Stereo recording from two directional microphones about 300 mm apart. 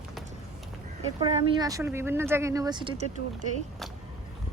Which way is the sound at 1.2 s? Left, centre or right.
Centre.